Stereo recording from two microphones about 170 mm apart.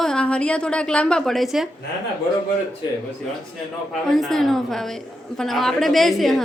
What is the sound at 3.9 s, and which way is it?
A woman's voice, centre (ahead or behind).